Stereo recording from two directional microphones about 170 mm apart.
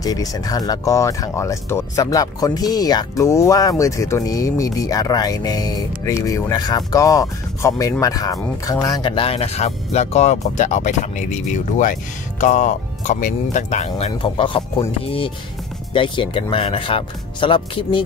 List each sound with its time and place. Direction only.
0.0 s speech: 20° left (ahead or behind)